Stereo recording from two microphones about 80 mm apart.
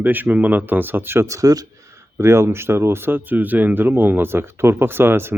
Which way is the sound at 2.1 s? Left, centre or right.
Right.